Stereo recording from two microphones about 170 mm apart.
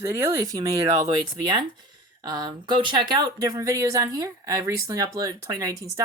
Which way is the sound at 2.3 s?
25° right (ahead or behind).